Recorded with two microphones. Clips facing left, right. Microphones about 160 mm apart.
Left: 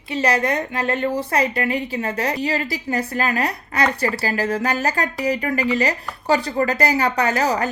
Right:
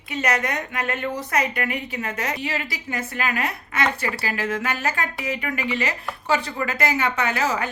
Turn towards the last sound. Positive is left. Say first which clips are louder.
# left 4 dB
turn(degrees=40)  # may be behind; listen again after turning